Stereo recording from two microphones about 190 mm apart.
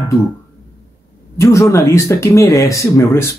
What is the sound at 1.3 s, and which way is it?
Speech, 15° left (ahead or behind).